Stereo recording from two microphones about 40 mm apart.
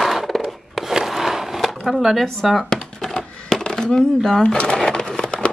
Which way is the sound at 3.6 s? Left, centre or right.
Centre.